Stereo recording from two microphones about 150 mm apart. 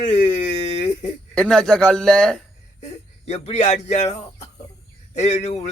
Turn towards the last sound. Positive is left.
turn(degrees=50)  # may be behind; listen again after turning